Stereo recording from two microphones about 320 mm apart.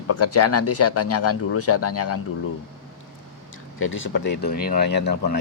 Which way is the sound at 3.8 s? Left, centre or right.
Left.